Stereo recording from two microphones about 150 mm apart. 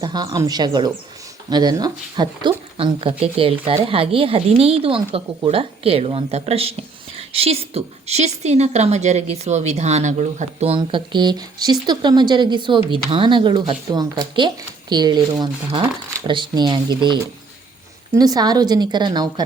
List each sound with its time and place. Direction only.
0.0 s a woman's voice: 30° right (ahead or behind)